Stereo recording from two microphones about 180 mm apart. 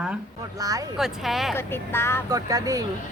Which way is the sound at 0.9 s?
Centre (ahead or behind).